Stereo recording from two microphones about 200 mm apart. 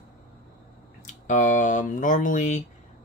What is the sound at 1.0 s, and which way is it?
Speech, 40° left (ahead or behind).